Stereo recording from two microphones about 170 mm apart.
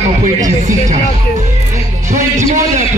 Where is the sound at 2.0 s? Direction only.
45° right (ahead or behind).